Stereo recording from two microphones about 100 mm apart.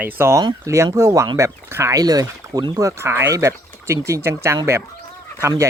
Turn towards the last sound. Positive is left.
turn(degrees=-30)  # may be behind; listen again after turning